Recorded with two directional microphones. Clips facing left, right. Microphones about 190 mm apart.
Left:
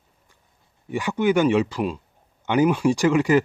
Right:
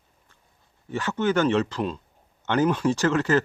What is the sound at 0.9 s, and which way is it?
Speech, 15° left (ahead or behind).